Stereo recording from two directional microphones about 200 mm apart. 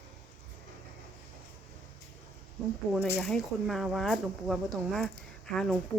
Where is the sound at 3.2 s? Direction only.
Centre (ahead or behind).